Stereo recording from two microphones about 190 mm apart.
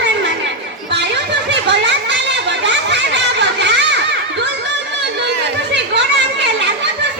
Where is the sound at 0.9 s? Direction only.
65° right (ahead or behind).